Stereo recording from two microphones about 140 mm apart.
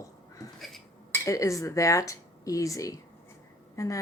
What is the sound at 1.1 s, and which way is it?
Speech, 25° left (ahead or behind).